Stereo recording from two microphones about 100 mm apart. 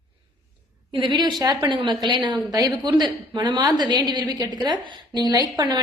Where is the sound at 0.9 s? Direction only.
50° right (ahead or behind).